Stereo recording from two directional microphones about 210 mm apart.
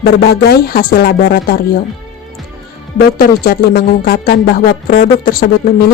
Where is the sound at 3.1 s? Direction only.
45° left (ahead or behind).